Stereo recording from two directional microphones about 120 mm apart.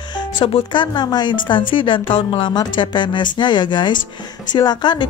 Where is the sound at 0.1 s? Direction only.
40° left (ahead or behind).